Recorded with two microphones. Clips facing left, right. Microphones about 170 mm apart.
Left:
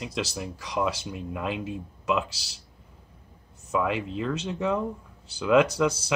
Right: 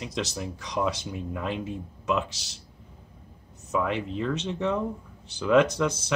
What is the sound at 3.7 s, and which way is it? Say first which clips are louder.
Speech: left 1 dB; 5° left (ahead or behind).